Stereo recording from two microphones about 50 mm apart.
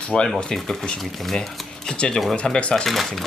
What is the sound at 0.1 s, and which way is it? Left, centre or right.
Speech, centre.